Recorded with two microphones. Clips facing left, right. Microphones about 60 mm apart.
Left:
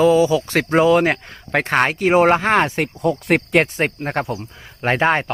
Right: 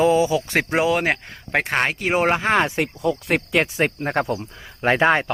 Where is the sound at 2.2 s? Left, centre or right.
Centre.